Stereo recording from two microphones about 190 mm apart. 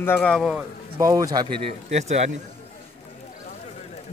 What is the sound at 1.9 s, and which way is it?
Speech, 35° right (ahead or behind).